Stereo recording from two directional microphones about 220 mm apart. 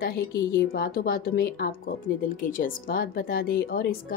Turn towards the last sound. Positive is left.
turn(degrees=40)  # may be behind; listen again after turning